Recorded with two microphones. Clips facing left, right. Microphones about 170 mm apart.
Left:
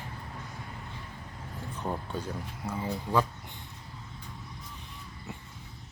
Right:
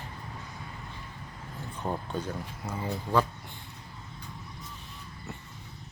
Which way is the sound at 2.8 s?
15° left (ahead or behind).